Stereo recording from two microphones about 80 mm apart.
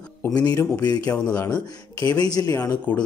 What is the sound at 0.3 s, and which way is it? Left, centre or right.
A man's voice, left.